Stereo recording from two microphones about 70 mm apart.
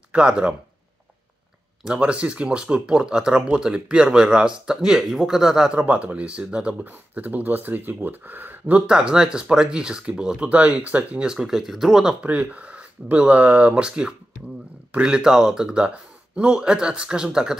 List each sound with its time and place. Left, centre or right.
0.1 s speech: centre
2.0 s speech: centre
5.7 s speech: centre
8.8 s speech: centre
12.2 s speech: centre